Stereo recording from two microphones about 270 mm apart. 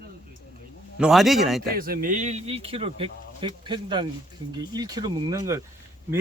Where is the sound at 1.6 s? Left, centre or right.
Right.